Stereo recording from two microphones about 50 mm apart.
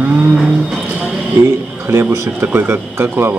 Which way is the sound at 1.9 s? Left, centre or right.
Right.